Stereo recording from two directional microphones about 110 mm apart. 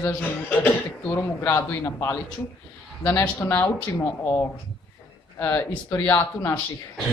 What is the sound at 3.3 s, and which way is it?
Speech, 20° left (ahead or behind).